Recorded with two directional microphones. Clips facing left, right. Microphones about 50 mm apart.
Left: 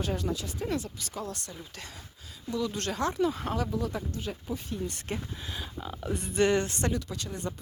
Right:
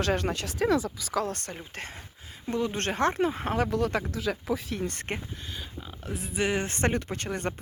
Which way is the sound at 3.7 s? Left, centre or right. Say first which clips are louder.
Right 5 dB; right.